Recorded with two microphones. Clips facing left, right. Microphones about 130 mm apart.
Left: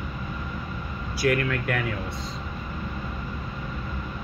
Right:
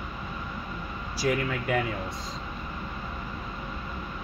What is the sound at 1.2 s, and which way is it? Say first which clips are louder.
Speech: left 3 dB; 75° left (ahead or behind).